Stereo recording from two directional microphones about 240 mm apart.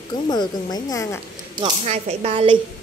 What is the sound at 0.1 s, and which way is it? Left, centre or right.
Speech, centre.